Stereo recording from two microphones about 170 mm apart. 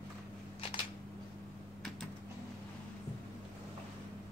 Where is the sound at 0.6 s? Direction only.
30° left (ahead or behind).